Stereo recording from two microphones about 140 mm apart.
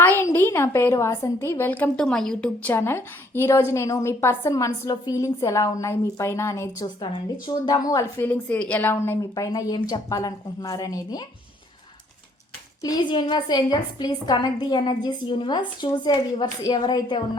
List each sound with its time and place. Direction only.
0.2 s a woman's voice: 15° left (ahead or behind)
8.2 s a woman's voice: 10° left (ahead or behind)
12.8 s a woman's voice: 30° left (ahead or behind)